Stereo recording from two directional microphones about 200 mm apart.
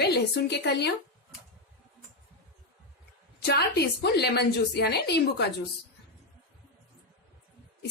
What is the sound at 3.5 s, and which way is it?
A woman's voice, 55° left (ahead or behind).